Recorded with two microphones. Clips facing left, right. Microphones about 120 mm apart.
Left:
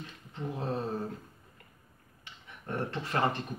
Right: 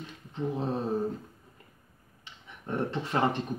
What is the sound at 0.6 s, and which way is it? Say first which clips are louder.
Speech: right 1 dB; 20° right (ahead or behind).